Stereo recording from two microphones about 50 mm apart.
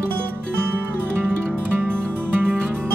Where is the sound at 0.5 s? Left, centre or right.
Right.